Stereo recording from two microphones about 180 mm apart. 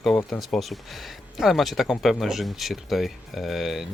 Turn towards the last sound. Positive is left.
turn(degrees=0)  # may be behind; listen again after turning